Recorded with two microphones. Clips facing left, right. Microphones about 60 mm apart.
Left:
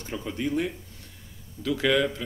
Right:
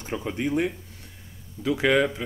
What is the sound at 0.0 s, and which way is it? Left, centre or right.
Speech, right.